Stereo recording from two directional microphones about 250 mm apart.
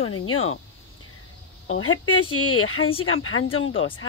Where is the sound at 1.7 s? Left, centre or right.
Left.